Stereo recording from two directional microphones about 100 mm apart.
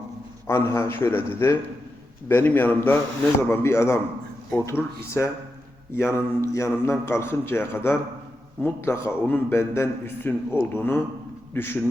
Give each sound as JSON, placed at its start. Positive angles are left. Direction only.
{"t": 0.4, "sound": "a man's voice", "side_deg": 25}